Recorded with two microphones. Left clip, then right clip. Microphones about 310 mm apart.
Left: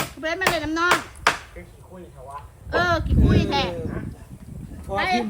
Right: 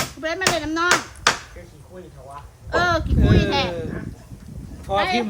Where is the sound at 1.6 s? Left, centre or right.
Left.